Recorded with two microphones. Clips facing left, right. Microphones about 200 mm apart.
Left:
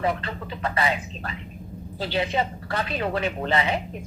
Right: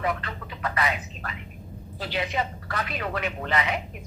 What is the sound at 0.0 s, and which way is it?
Speech, 30° left (ahead or behind).